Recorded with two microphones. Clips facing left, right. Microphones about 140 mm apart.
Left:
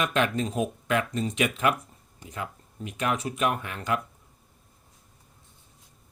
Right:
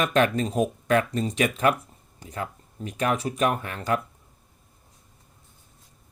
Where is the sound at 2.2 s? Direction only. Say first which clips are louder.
Right 3 dB; 40° right (ahead or behind).